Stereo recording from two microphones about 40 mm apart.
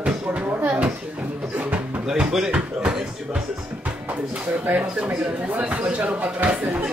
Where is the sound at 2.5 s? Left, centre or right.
Centre.